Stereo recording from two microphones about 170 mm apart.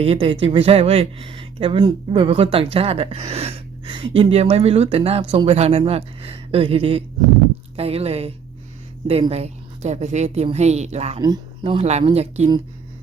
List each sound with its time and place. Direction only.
0.0 s speech: 35° right (ahead or behind)
11.2 s speech: 30° right (ahead or behind)